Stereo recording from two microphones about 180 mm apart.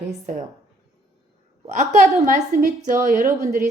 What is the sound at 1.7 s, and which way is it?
A woman's voice, 45° right (ahead or behind).